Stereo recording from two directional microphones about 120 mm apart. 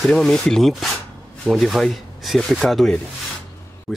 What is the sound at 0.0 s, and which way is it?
Speech, 5° left (ahead or behind).